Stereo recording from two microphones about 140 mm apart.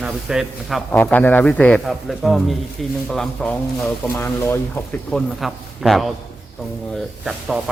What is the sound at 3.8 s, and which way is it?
Speech, 20° left (ahead or behind).